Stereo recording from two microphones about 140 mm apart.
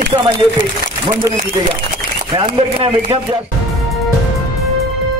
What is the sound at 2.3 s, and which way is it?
Speech, 40° right (ahead or behind).